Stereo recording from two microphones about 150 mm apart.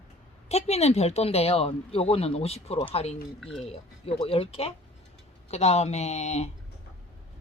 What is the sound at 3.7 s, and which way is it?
Speech, 40° left (ahead or behind).